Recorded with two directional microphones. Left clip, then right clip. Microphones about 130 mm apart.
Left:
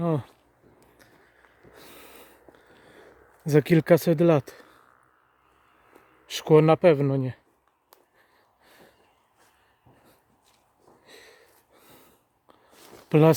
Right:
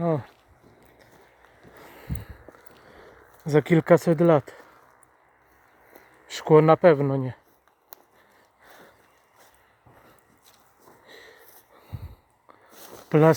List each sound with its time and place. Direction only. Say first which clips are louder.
3.4 s speech: even; 55° left (ahead or behind)
6.2 s speech: right 2 dB; 35° left (ahead or behind)
11.0 s sniff: right 2 dB; 25° left (ahead or behind)
13.1 s speech: right 1 dB; 45° left (ahead or behind)